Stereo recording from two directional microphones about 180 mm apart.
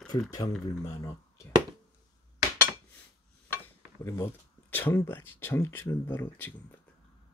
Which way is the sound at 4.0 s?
15° left (ahead or behind).